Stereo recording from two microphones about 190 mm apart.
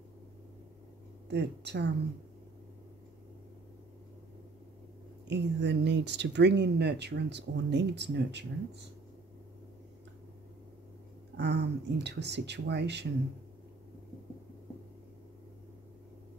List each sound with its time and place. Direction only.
1.3 s speech: 65° right (ahead or behind)
5.3 s speech: 65° right (ahead or behind)
11.3 s speech: 60° right (ahead or behind)